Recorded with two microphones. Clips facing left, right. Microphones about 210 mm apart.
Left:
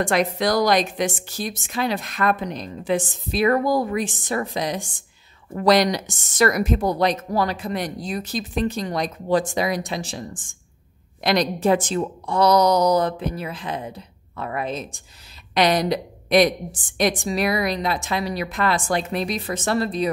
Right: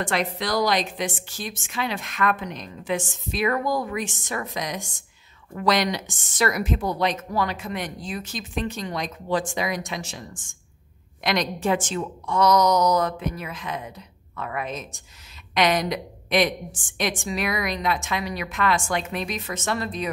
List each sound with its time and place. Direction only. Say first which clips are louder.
0.0 s speech: left 6 dB; 45° left (ahead or behind)